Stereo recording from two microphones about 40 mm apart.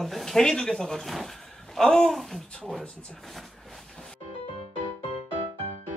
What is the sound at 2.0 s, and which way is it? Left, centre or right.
Speech, centre.